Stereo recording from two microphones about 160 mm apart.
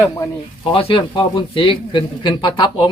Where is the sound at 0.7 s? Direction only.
35° left (ahead or behind).